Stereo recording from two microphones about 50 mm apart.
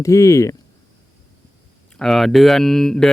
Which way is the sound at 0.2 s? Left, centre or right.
Left.